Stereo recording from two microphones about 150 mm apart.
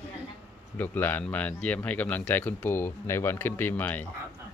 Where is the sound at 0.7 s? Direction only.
15° left (ahead or behind).